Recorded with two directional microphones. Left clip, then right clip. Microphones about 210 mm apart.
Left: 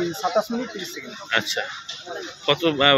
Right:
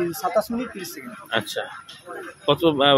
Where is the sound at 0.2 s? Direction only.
Centre (ahead or behind).